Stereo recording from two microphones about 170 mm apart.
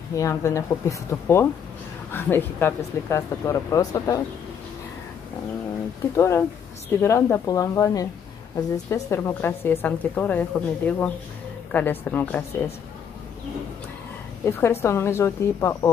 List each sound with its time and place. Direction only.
0.1 s a woman's voice: 20° left (ahead or behind)
6.1 s a woman's voice: 15° left (ahead or behind)
14.4 s a woman's voice: 15° left (ahead or behind)